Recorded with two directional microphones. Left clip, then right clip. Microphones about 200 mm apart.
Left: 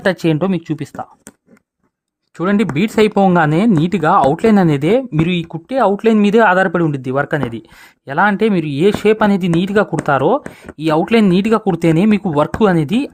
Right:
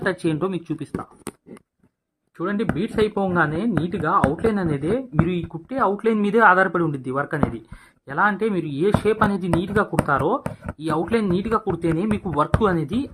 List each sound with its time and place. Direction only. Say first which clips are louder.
0.0 s speech: left 7 dB; 50° left (ahead or behind)
2.4 s speech: left 8 dB; 55° left (ahead or behind)